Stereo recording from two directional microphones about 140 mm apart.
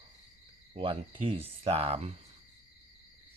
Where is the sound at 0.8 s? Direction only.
40° right (ahead or behind).